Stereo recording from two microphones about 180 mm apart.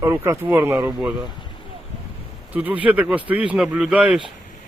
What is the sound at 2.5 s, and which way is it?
Speech, 10° right (ahead or behind).